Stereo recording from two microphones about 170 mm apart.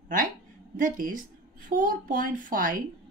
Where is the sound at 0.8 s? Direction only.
55° right (ahead or behind).